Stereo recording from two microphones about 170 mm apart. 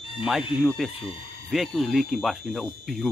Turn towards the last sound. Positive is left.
turn(degrees=0)  # may be behind; listen again after turning